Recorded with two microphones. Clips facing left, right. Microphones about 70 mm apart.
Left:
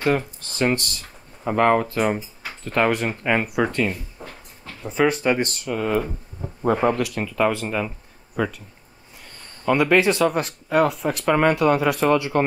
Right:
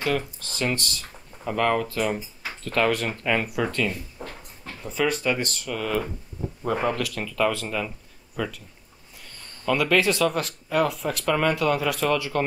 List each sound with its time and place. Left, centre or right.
0.0 s speech: left
6.6 s speech: left
7.2 s speech: left
9.7 s speech: left